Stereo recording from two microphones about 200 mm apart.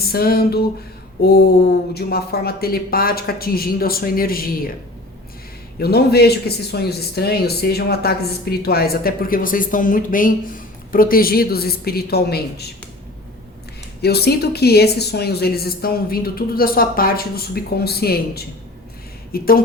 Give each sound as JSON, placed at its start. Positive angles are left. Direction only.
{"t": 0.1, "sound": "a man's voice", "side_deg": 50}
{"t": 5.8, "sound": "a man's voice", "side_deg": 50}
{"t": 14.0, "sound": "a man's voice", "side_deg": 55}